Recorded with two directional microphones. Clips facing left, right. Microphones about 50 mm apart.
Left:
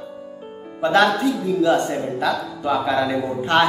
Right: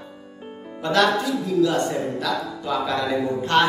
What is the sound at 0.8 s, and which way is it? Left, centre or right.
Speech, left.